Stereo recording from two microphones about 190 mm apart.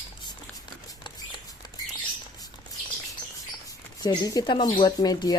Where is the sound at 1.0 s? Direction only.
25° left (ahead or behind).